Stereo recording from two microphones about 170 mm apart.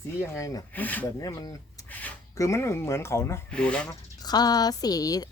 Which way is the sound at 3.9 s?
25° left (ahead or behind).